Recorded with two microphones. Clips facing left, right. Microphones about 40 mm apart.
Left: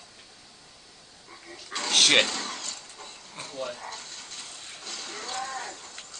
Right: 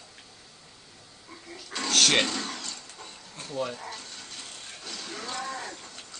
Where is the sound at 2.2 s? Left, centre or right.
Centre.